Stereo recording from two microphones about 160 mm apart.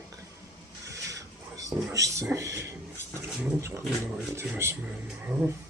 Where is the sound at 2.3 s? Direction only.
20° right (ahead or behind).